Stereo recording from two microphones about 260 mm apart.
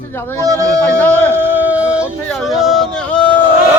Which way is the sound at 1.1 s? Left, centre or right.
Centre.